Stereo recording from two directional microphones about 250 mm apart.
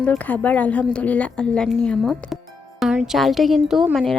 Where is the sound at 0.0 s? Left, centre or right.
Centre.